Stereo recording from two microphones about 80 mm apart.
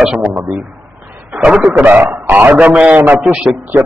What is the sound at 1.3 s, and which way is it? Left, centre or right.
A man's voice, centre.